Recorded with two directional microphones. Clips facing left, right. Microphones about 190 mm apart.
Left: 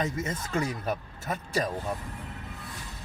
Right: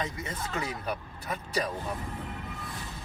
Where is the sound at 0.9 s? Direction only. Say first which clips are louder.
Left 3 dB; 45° left (ahead or behind).